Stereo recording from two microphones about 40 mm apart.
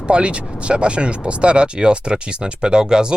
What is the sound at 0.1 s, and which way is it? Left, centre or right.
Speech, right.